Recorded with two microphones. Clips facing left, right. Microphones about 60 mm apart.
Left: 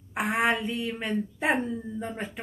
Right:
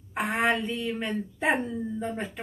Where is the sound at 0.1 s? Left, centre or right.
Centre.